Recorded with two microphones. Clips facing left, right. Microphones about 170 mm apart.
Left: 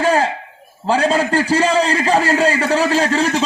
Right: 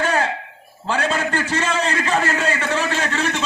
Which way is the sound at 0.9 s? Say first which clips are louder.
Left 6 dB; 30° left (ahead or behind).